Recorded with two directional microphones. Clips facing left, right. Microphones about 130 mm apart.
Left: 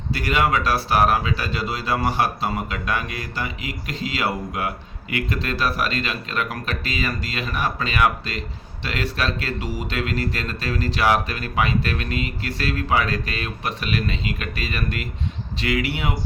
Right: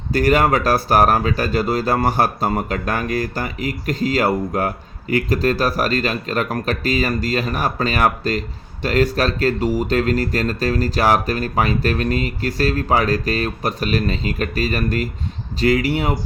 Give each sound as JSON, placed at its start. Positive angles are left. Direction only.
{"t": 0.1, "sound": "speech", "side_deg": -45}